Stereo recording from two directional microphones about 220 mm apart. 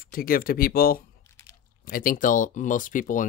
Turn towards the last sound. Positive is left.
turn(degrees=35)  # may be behind; listen again after turning